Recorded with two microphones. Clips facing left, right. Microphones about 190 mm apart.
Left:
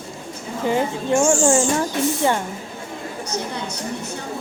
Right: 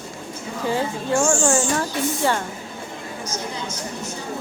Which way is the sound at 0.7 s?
20° left (ahead or behind).